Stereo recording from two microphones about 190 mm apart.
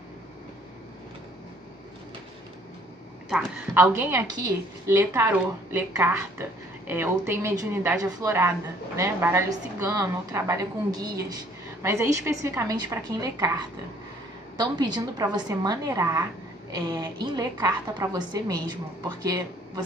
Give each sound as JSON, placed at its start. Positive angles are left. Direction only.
{"t": 3.3, "sound": "a woman's voice", "side_deg": -5}
{"t": 14.6, "sound": "a woman's voice", "side_deg": -20}